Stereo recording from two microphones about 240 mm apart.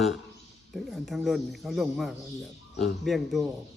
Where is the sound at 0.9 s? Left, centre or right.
Centre.